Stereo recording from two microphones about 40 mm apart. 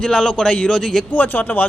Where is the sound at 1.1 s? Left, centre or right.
Left.